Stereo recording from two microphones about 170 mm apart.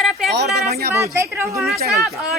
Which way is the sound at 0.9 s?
15° right (ahead or behind).